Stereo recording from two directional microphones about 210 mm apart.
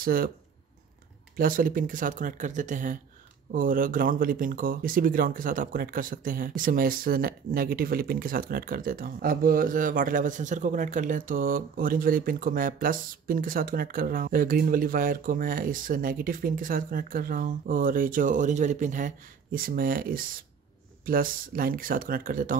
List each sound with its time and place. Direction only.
0.0 s speech: 45° right (ahead or behind)
1.3 s speech: 40° right (ahead or behind)